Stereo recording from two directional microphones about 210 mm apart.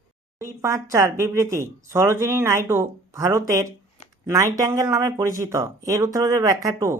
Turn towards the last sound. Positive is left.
turn(degrees=-15)  # may be behind; listen again after turning